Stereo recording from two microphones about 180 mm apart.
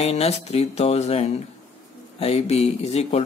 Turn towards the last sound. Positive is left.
turn(degrees=35)  # may be behind; listen again after turning